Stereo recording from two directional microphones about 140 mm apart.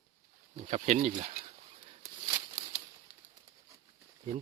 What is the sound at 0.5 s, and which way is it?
Speech, 50° right (ahead or behind).